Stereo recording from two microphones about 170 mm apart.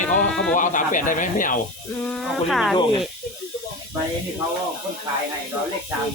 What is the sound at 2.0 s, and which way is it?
Speech, centre (ahead or behind).